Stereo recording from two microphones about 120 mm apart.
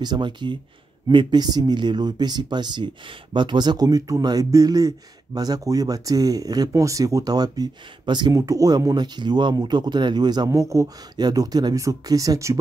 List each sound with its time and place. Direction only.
0.0 s speech: 40° right (ahead or behind)